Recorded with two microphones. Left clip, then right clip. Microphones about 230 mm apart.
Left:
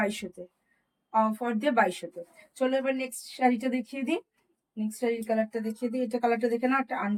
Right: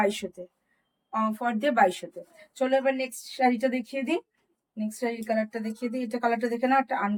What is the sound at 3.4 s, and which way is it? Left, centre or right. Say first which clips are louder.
Speech: right 2 dB; centre.